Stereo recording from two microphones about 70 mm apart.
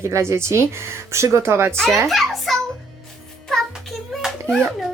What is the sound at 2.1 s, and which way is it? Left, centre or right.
Speech, centre.